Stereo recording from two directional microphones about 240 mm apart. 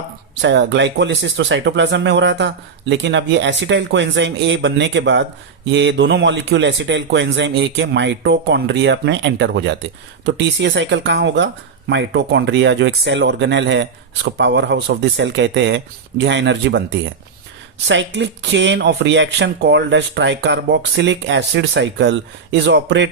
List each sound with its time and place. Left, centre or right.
0.4 s speech: right